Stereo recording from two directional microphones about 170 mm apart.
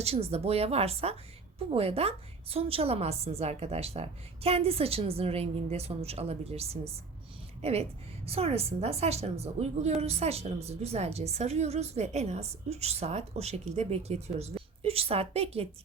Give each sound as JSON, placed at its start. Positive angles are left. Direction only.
{"t": 0.0, "sound": "speech", "side_deg": -35}